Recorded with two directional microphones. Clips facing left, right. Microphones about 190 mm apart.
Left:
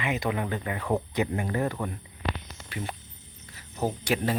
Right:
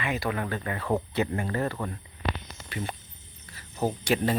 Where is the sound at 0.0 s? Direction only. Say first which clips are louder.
Left 1 dB; 15° left (ahead or behind).